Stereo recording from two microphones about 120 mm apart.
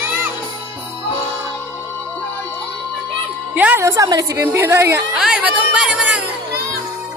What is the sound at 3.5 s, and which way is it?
Music, 15° right (ahead or behind).